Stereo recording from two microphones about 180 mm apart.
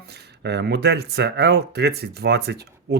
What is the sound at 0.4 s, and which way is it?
Speech, 70° right (ahead or behind).